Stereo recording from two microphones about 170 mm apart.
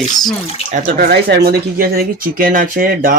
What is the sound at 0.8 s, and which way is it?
Speech, 60° right (ahead or behind).